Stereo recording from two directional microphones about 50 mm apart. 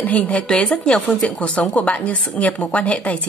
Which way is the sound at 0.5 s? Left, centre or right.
Centre.